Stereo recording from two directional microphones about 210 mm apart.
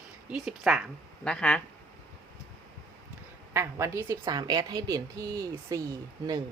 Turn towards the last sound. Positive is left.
turn(degrees=-15)  # may be behind; listen again after turning